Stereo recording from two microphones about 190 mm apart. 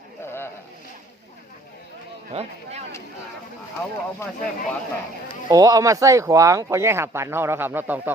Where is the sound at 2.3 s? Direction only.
35° right (ahead or behind).